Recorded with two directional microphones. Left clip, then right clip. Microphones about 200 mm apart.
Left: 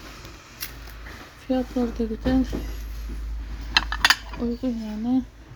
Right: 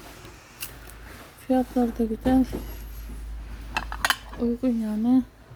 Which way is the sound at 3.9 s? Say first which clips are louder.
Left 5 dB; 10° right (ahead or behind).